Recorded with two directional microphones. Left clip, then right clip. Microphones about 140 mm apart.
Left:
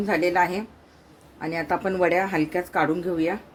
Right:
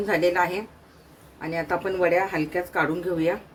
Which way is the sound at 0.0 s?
30° left (ahead or behind).